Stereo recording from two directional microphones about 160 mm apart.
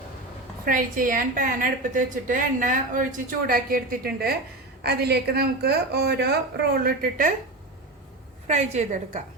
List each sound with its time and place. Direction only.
0.6 s a woman's voice: 60° right (ahead or behind)
4.8 s a woman's voice: 85° right; by 7.3 s 60° right (ahead or behind)
8.4 s a woman's voice: 45° right (ahead or behind)